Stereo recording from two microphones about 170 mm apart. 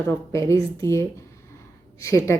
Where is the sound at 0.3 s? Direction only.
15° left (ahead or behind).